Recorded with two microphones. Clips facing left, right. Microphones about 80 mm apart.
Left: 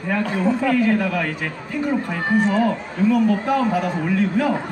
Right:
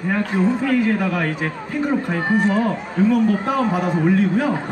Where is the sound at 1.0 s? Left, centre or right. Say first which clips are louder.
Right 1 dB; right.